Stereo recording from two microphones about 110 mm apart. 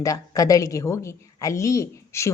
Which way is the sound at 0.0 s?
30° left (ahead or behind).